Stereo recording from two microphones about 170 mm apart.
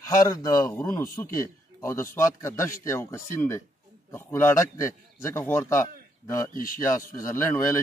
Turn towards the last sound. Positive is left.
turn(degrees=15)  # may be behind; listen again after turning